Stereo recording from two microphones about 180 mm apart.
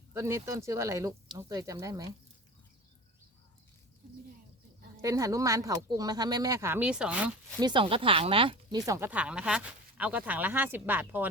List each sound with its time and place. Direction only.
0.1 s speech: 15° right (ahead or behind)
5.0 s speech: 15° right (ahead or behind)
7.6 s speech: 25° right (ahead or behind)
8.9 s speech: 10° right (ahead or behind)